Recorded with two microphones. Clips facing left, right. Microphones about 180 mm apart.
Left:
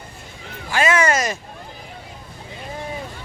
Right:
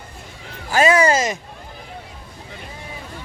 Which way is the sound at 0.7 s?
35° right (ahead or behind).